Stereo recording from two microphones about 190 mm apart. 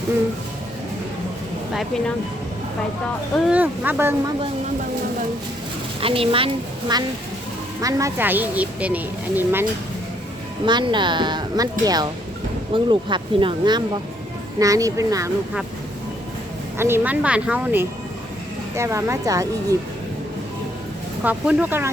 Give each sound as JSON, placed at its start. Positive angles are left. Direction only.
{"t": 1.7, "sound": "speech", "side_deg": 0}
{"t": 3.4, "sound": "a woman's voice", "side_deg": -10}
{"t": 6.0, "sound": "a woman's voice", "side_deg": -30}
{"t": 10.7, "sound": "a woman's voice", "side_deg": -25}
{"t": 16.7, "sound": "a woman's voice", "side_deg": -10}
{"t": 21.2, "sound": "a woman's voice", "side_deg": -10}